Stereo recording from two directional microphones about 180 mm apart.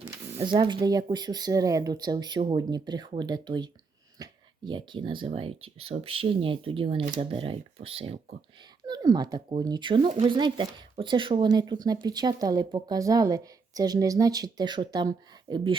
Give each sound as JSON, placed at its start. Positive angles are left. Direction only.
{"t": 0.0, "sound": "speech", "side_deg": -30}